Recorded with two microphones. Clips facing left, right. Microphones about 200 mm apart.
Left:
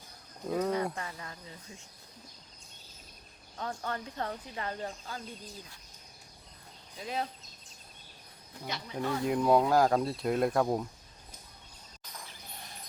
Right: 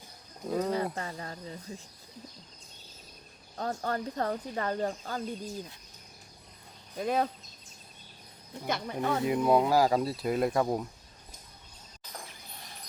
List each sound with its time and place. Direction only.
0.4 s speech: centre (ahead or behind)
0.9 s speech: 35° right (ahead or behind)
3.6 s speech: 40° right (ahead or behind)
6.9 s speech: 50° right (ahead or behind)
8.6 s speech: 55° right (ahead or behind)
9.2 s speech: 5° right (ahead or behind)